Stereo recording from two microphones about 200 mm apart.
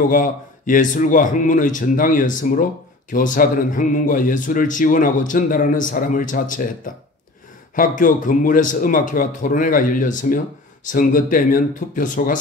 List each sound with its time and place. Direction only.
0.1 s a man's voice: 40° left (ahead or behind)